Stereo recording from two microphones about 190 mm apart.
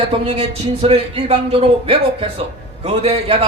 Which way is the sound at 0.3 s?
35° right (ahead or behind).